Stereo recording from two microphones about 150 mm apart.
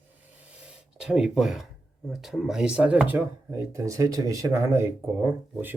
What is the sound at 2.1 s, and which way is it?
Speech, centre (ahead or behind).